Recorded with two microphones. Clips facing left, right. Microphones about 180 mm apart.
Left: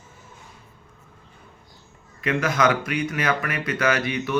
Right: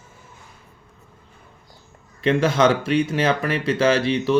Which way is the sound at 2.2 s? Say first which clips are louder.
Right 4 dB; 30° right (ahead or behind).